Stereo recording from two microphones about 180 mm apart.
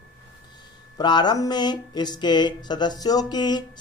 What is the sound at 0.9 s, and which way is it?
Speech, 25° left (ahead or behind).